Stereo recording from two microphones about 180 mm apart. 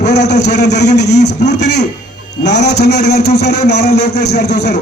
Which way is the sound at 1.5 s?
40° left (ahead or behind).